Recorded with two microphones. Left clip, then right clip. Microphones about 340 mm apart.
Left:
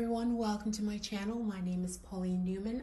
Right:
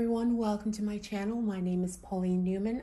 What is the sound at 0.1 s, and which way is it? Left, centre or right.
A woman's voice, centre.